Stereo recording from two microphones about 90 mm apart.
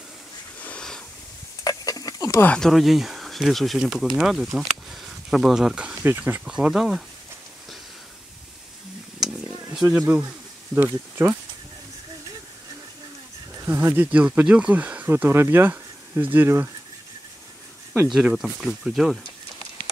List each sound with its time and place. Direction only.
0.6 s wheeze: 15° left (ahead or behind)
1.6 s a sound: 45° left (ahead or behind)
2.6 s speech: centre (ahead or behind)
6.0 s speech: 20° right (ahead or behind)
6.4 s speech: 5° right (ahead or behind)
9.2 s a sound: 5° right (ahead or behind)
10.7 s speech: 25° right (ahead or behind)
13.7 s speech: 25° right (ahead or behind)
15.0 s speech: 25° right (ahead or behind)
18.0 s speech: 5° right (ahead or behind)